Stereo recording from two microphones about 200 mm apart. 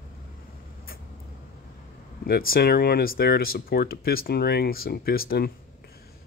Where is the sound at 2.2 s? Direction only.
50° left (ahead or behind).